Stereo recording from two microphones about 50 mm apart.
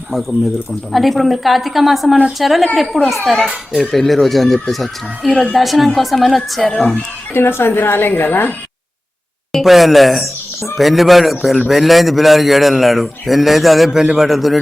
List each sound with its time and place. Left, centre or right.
0.9 s a man's voice: centre
7.3 s a woman's voice: left
9.5 s a man's voice: centre